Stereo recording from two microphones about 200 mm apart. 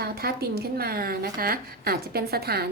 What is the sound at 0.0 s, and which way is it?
Speech, 50° right (ahead or behind).